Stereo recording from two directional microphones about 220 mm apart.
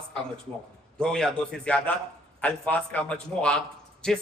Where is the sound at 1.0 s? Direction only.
5° left (ahead or behind).